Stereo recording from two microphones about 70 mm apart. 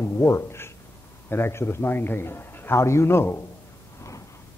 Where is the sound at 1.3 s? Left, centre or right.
Left.